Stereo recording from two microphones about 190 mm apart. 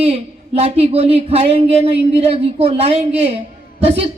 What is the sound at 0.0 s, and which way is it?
Speech, 30° right (ahead or behind).